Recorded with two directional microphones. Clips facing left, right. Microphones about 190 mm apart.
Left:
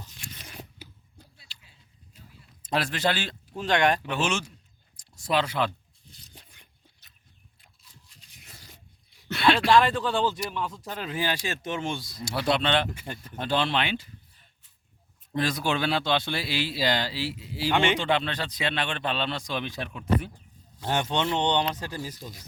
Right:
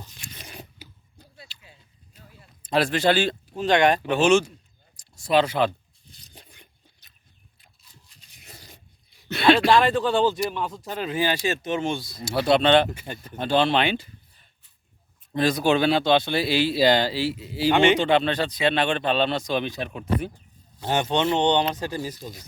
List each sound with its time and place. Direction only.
0.2 s crunch: 15° right (ahead or behind)
2.7 s speech: 30° right (ahead or behind)
3.7 s speech: 15° right (ahead or behind)
4.0 s speech: 30° right (ahead or behind)
4.9 s zipper: 25° right (ahead or behind)
8.4 s a sound: 20° right (ahead or behind)
10.0 s speech: 20° right (ahead or behind)
10.8 s speech: 10° right (ahead or behind)
11.7 s speech: 20° right (ahead or behind)
11.9 s speech: 10° right (ahead or behind)
12.2 s speech: 30° right (ahead or behind)
15.4 s speech: 20° right (ahead or behind)
21.0 s speech: 20° right (ahead or behind)